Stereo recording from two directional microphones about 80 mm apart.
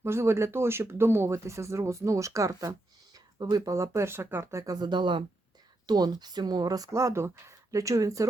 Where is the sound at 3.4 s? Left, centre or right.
Right.